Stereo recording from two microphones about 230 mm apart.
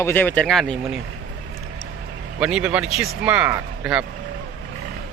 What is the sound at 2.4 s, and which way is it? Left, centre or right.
Speech, centre.